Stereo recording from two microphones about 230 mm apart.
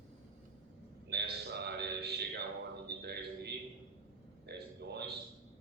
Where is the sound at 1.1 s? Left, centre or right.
Right.